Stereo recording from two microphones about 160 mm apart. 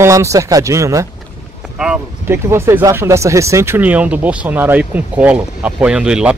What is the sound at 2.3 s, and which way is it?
Speech, 15° right (ahead or behind).